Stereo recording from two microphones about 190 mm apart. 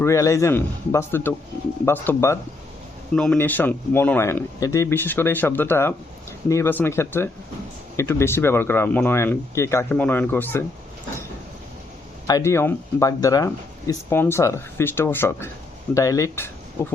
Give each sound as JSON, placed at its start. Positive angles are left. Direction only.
{"t": 0.0, "sound": "speech", "side_deg": 15}
{"t": 12.3, "sound": "speech", "side_deg": 15}